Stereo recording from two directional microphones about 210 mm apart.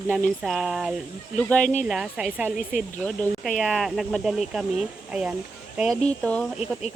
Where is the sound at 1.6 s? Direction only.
35° left (ahead or behind).